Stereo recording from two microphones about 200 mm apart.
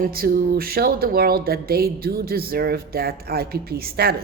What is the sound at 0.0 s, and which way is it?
Speech, 45° right (ahead or behind).